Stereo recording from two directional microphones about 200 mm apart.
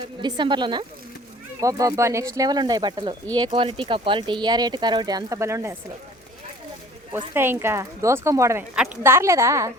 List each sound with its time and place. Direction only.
0.2 s speech: 20° right (ahead or behind)
7.1 s speech: 10° right (ahead or behind)